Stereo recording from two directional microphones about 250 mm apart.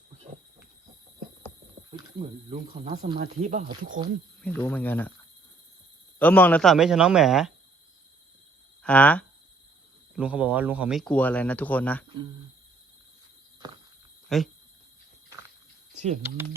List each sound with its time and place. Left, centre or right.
2.1 s speech: right
4.4 s cricket: centre
6.1 s speech: centre
8.8 s speech: centre
10.2 s speech: centre
12.0 s speech: centre
13.6 s walk: centre
14.3 s speech: centre
16.2 s speech: centre